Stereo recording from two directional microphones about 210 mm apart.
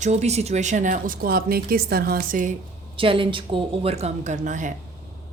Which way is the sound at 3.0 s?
25° right (ahead or behind).